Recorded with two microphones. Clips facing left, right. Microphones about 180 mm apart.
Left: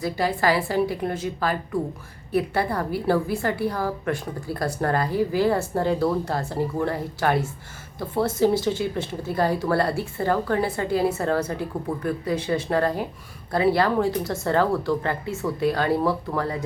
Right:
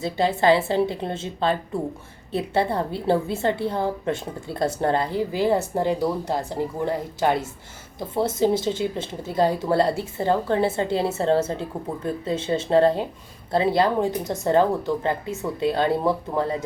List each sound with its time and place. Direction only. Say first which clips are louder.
0.0 s a woman's voice: right 2 dB; 25° right (ahead or behind)